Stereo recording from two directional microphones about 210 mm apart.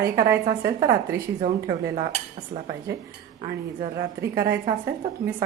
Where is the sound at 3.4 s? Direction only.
15° right (ahead or behind).